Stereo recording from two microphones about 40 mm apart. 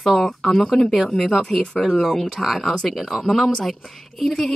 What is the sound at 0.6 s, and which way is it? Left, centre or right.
Speech, centre.